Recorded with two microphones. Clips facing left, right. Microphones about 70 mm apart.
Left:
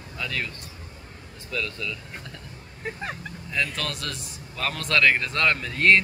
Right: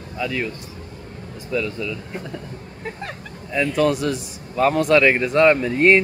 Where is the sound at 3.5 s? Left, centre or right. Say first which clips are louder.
Right 11 dB; centre.